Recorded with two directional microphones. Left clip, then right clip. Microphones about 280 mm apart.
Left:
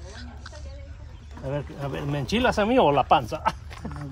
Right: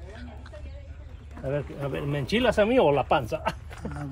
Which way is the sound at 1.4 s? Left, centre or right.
Centre.